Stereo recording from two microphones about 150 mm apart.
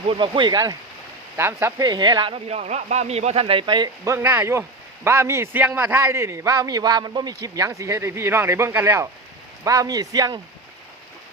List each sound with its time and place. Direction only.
0.1 s speech: 35° right (ahead or behind)
4.1 s a man's voice: 15° right (ahead or behind)